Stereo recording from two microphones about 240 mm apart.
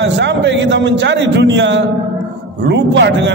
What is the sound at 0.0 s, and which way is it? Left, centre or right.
A man's voice, right.